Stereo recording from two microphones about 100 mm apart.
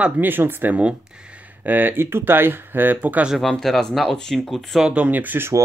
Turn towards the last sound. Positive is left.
turn(degrees=-20)  # may be behind; listen again after turning